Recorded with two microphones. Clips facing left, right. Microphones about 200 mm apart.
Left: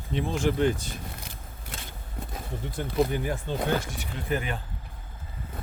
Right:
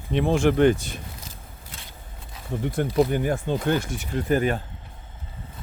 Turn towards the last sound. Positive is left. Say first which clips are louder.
# right 8 dB
turn(degrees=-45)  # may be behind; listen again after turning